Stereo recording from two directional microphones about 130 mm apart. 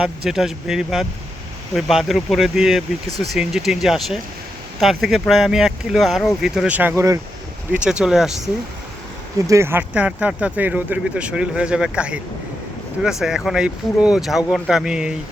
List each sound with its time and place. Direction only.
0.3 s speech: 5° right (ahead or behind); by 7.2 s 20° right (ahead or behind)
7.9 s speech: 5° right (ahead or behind)
9.5 s speech: 20° right (ahead or behind)